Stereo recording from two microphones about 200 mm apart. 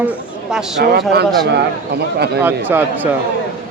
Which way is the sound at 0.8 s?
55° right (ahead or behind).